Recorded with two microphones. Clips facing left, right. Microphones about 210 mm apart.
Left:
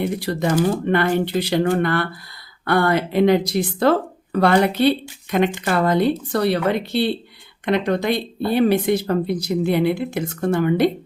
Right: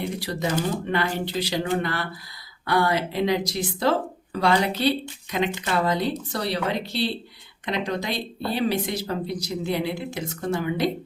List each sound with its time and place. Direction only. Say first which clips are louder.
0.0 s speech: left 6 dB; 55° left (ahead or behind)